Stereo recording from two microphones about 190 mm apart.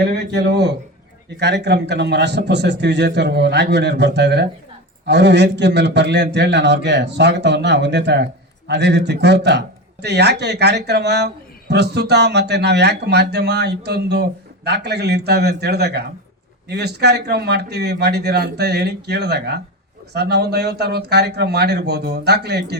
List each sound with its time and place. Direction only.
0.0 s a man's voice: 60° right (ahead or behind)